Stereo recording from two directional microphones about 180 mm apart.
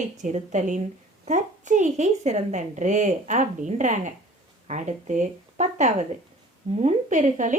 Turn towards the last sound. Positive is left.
turn(degrees=-45)  # may be behind; listen again after turning